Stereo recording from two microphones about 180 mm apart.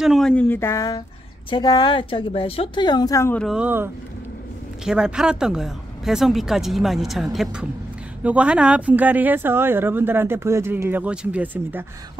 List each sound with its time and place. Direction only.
0.0 s speech: centre (ahead or behind); by 3.3 s 20° left (ahead or behind)
3.3 s a woman's voice: centre (ahead or behind)